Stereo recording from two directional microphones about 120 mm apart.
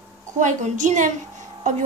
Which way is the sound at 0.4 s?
90° right.